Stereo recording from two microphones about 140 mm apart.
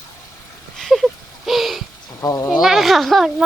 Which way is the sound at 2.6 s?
Centre (ahead or behind).